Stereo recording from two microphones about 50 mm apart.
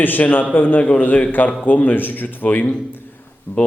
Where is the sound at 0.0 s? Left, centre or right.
Left.